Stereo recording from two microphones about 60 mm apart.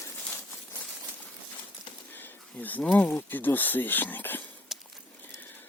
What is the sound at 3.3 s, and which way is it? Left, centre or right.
Speech, left.